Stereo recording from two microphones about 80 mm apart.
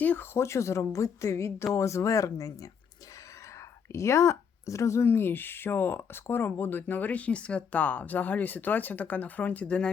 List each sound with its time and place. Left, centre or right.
0.0 s speech: left
0.3 s speech: left
3.9 s speech: left; by 9.9 s centre